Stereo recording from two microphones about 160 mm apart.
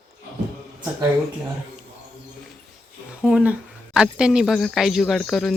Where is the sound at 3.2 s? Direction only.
5° right (ahead or behind).